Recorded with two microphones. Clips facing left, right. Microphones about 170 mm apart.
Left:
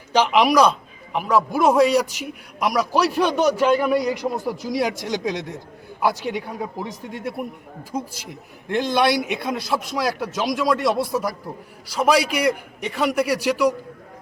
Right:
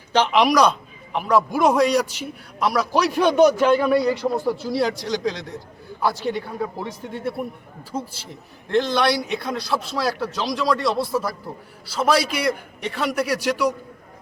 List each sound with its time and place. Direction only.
0.1 s a man's voice: 5° left (ahead or behind)